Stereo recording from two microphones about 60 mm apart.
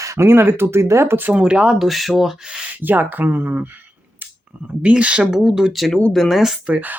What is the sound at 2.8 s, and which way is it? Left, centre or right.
Speech, right.